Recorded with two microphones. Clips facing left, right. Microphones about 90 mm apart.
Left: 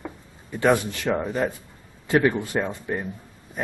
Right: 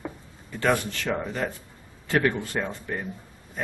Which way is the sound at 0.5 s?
15° left (ahead or behind).